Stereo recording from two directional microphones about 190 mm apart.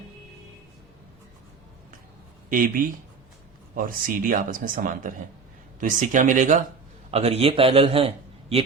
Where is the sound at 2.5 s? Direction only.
45° right (ahead or behind).